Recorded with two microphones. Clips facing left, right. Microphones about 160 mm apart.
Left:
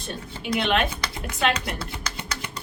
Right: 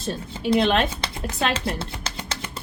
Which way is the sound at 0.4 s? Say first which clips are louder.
Right 4 dB; 30° right (ahead or behind).